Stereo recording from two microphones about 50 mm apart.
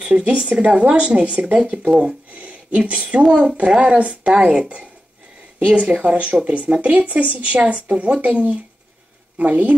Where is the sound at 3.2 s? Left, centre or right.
Centre.